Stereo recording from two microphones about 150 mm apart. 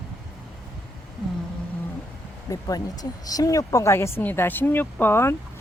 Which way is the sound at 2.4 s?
25° left (ahead or behind).